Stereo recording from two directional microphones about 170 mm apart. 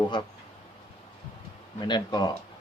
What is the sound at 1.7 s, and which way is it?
Speech, 25° left (ahead or behind).